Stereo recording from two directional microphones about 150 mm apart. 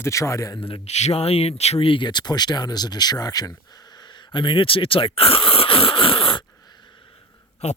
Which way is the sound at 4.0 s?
30° left (ahead or behind).